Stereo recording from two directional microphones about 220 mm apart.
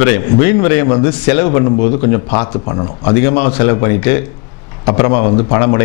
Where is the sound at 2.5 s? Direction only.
25° left (ahead or behind).